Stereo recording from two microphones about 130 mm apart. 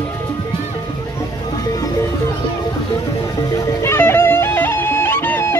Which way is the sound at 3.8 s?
20° left (ahead or behind).